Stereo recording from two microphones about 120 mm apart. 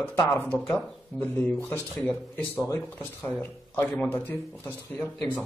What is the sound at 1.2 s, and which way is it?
A man's voice, 15° left (ahead or behind).